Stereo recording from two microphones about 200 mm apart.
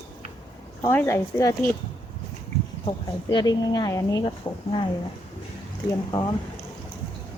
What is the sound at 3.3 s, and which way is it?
Speech, 20° left (ahead or behind).